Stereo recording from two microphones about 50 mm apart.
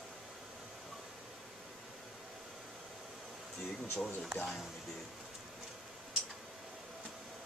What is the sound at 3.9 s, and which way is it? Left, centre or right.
Speech, centre.